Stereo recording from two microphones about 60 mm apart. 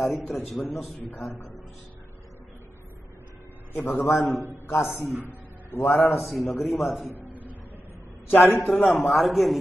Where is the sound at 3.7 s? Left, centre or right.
Left.